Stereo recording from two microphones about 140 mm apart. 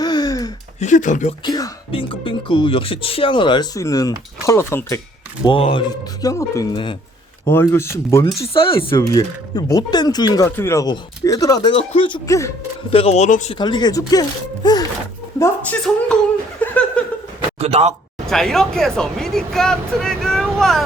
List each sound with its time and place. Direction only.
0.0 s a sound: 30° left (ahead or behind)
0.8 s speech: 60° left (ahead or behind)
1.5 s speech: 25° left (ahead or behind)
1.9 s speech: 40° left (ahead or behind); by 4.9 s 20° left (ahead or behind)
5.4 s speech: 40° left (ahead or behind)
5.9 s speech: 25° left (ahead or behind)
8.5 s speech: 40° left (ahead or behind)
8.9 s speech: 25° left (ahead or behind)
12.3 s speech: 20° left (ahead or behind)
12.9 s speech: 45° left (ahead or behind)
13.5 s speech: 35° left (ahead or behind); by 15.7 s 20° left (ahead or behind)
16.6 s laughter: 10° left (ahead or behind)
17.6 s a man's voice: 45° right (ahead or behind)
18.3 s speech: 5° left (ahead or behind)